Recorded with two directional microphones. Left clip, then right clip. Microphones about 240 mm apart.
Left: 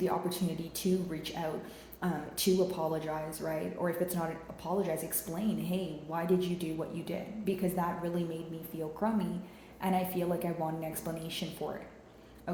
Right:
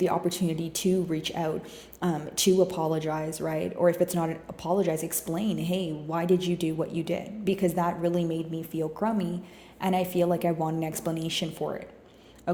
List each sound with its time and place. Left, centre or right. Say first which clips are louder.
0.0 s speech: right 6 dB; right